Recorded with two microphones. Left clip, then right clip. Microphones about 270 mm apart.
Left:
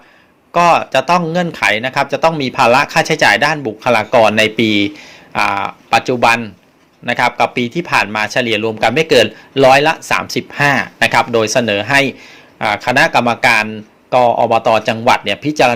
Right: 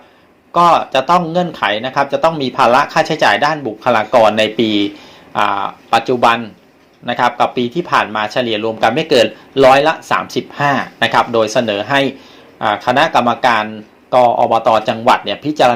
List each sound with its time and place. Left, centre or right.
0.5 s speech: left